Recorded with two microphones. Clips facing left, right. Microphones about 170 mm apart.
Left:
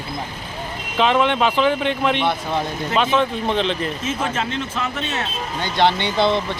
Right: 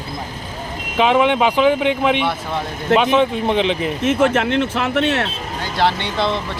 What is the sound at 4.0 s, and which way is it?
Speech, 70° right (ahead or behind).